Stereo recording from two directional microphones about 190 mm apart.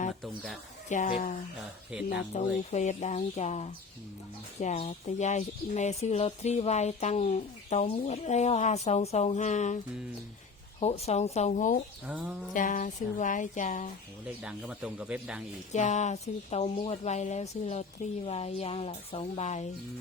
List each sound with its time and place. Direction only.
0.2 s a sound: centre (ahead or behind)
0.9 s speech: 40° left (ahead or behind)
1.9 s speech: 5° right (ahead or behind)
2.6 s speech: 35° left (ahead or behind)
12.0 s a sound: 10° right (ahead or behind)
12.5 s speech: 45° left (ahead or behind)
14.4 s speech: 5° right (ahead or behind)
15.7 s speech: 40° left (ahead or behind)